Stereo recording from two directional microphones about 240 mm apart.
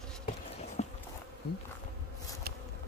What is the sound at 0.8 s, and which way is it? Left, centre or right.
Insect, left.